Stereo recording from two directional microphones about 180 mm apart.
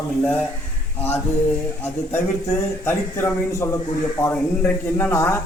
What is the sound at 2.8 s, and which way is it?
A man's voice, 15° left (ahead or behind).